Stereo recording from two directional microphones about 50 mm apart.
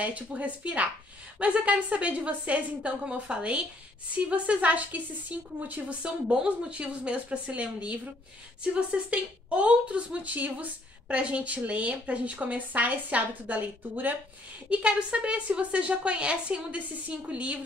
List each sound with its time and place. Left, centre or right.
0.0 s speech: right
6.0 s speech: right
14.7 s speech: right